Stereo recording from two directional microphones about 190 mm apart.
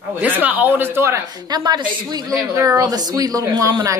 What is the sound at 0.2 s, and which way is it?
A woman's voice, 10° right (ahead or behind).